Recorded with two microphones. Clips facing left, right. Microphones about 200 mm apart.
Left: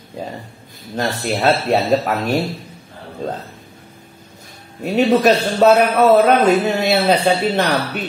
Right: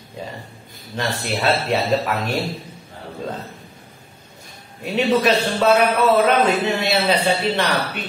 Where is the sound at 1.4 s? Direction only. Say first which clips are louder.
Left 4 dB; 40° left (ahead or behind).